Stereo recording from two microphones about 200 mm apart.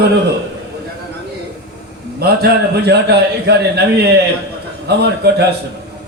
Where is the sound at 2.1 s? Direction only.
55° right (ahead or behind).